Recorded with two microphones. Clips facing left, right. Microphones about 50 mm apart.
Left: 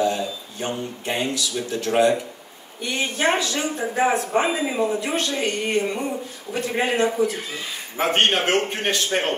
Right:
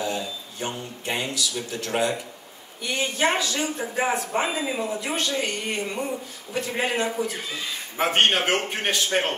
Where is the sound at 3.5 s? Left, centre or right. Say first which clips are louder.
Left 3 dB; left.